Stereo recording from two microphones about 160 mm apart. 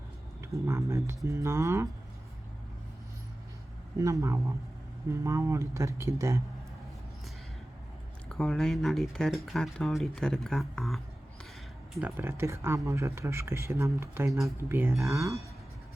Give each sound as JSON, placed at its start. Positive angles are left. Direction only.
{"t": 0.5, "sound": "speech", "side_deg": -15}
{"t": 3.9, "sound": "speech", "side_deg": -20}
{"t": 8.3, "sound": "speech", "side_deg": 0}
{"t": 11.9, "sound": "speech", "side_deg": -10}